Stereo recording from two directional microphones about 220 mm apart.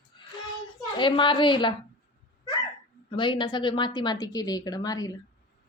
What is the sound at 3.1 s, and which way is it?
A woman's voice, 20° left (ahead or behind).